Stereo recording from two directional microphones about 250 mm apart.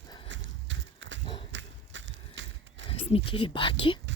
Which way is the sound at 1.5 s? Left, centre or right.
Right.